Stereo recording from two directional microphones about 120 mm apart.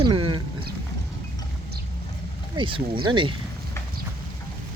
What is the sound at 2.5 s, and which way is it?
Speech, 45° right (ahead or behind).